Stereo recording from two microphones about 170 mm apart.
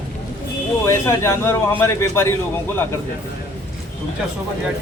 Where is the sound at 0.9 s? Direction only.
15° left (ahead or behind).